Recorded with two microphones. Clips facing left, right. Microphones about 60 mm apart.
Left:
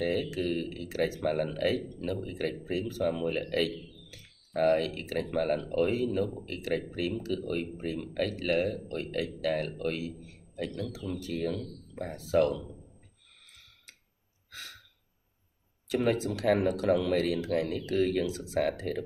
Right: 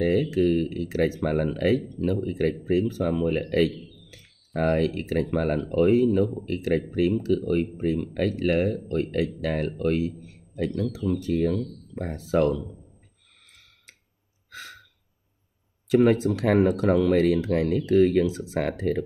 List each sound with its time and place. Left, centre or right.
0.0 s speech: right
4.6 s speech: right
15.9 s speech: right